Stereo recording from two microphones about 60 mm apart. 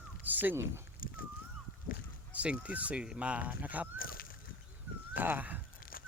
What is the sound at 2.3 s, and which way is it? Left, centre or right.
Speech, right.